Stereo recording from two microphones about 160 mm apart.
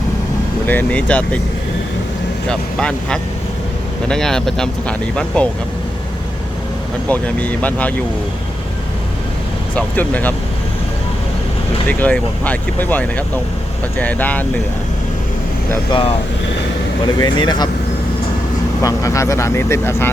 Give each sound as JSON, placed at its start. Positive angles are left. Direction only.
{"t": 0.7, "sound": "speech", "side_deg": 10}
{"t": 2.5, "sound": "speech", "side_deg": 5}
{"t": 7.1, "sound": "speech", "side_deg": 10}
{"t": 9.7, "sound": "speech", "side_deg": 10}
{"t": 11.9, "sound": "speech", "side_deg": 10}
{"t": 15.9, "sound": "speech", "side_deg": 35}
{"t": 17.2, "sound": "speech", "side_deg": 25}
{"t": 18.8, "sound": "speech", "side_deg": 20}